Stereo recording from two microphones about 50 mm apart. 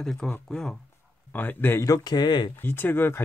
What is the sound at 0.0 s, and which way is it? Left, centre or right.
Speech, centre.